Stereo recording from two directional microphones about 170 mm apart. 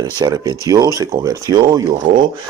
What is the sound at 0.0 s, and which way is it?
Speech, 20° right (ahead or behind).